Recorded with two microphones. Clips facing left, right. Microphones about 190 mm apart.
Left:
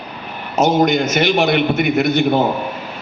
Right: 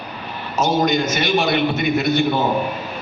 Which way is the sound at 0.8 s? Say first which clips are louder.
Left 4 dB; 60° left (ahead or behind).